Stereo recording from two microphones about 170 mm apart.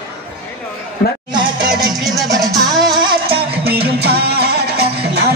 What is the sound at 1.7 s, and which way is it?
Music, centre (ahead or behind).